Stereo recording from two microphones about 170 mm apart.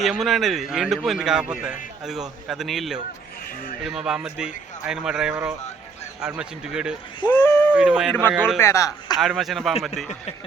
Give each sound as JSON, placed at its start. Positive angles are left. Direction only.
{"t": 0.0, "sound": "speech", "side_deg": 0}
{"t": 7.3, "sound": "a sound", "side_deg": 10}
{"t": 7.8, "sound": "speech", "side_deg": -5}
{"t": 8.5, "sound": "speech", "side_deg": 15}
{"t": 9.1, "sound": "speech", "side_deg": 0}